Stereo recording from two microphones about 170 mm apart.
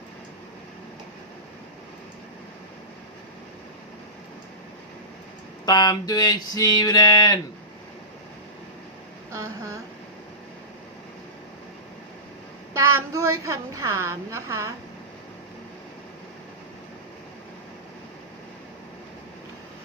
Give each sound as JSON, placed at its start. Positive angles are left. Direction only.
{"t": 5.6, "sound": "a sound", "side_deg": 25}
{"t": 9.3, "sound": "speech", "side_deg": -20}
{"t": 12.7, "sound": "a woman's voice", "side_deg": -15}